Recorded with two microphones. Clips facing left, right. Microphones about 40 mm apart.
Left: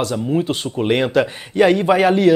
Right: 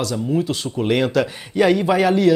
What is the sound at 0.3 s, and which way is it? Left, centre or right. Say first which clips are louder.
A man's voice: left 2 dB; left.